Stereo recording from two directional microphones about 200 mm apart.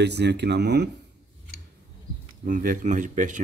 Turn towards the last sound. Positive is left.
turn(degrees=-40)  # may be behind; listen again after turning